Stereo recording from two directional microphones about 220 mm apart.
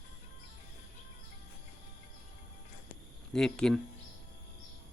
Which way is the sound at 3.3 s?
Centre (ahead or behind).